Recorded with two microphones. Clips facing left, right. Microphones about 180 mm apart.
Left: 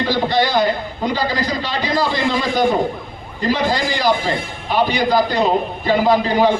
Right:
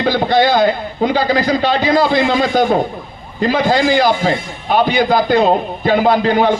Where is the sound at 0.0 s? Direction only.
55° right (ahead or behind).